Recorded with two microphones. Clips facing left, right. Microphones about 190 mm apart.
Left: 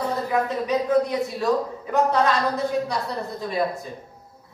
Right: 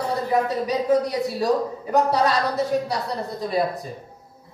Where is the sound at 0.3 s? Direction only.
35° right (ahead or behind).